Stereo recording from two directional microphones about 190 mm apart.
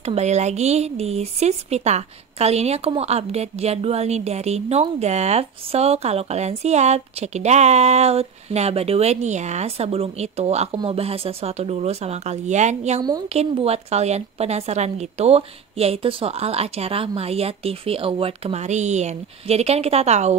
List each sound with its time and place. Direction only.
0.0 s speech: 35° right (ahead or behind)